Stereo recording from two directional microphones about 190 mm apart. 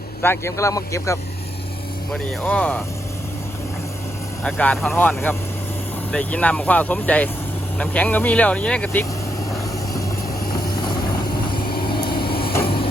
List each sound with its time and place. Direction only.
0.2 s speech: 10° left (ahead or behind)
4.4 s speech: 5° left (ahead or behind)
10.5 s vehicle: 25° left (ahead or behind)
12.6 s a sound: 30° left (ahead or behind)